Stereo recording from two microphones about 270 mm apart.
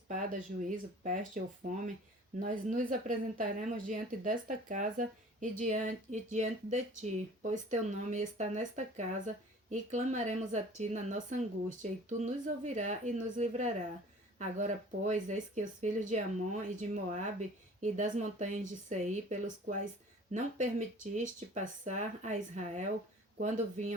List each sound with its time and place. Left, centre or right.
0.1 s speech: right